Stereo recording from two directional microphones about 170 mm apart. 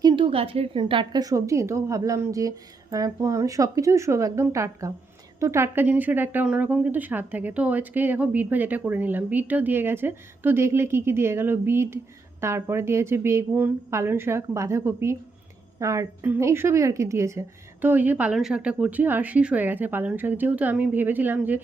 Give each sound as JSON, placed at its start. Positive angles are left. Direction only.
{"t": 0.0, "sound": "a woman's voice", "side_deg": -25}